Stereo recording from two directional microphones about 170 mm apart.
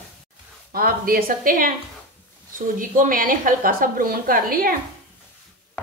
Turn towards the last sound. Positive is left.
turn(degrees=-60)  # may be behind; listen again after turning